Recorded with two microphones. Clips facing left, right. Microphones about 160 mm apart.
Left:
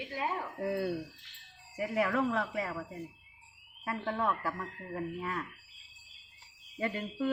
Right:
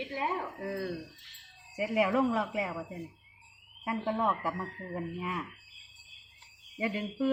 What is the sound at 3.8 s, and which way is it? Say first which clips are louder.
A woman's voice: right 2 dB; 20° right (ahead or behind).